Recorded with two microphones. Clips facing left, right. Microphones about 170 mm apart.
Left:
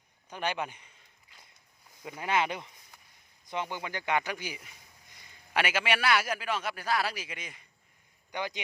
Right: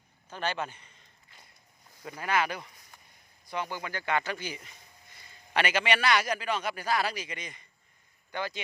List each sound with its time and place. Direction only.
0.3 s speech: 15° left (ahead or behind)
2.0 s a man's voice: 20° left (ahead or behind)
8.3 s speech: 15° left (ahead or behind)